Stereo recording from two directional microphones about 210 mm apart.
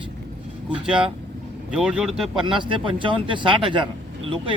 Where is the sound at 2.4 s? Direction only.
25° right (ahead or behind).